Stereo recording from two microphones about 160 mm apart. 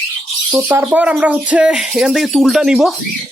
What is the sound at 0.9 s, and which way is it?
Speech, 10° right (ahead or behind).